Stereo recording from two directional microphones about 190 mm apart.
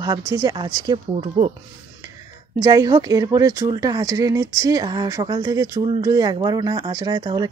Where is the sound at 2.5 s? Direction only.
20° right (ahead or behind).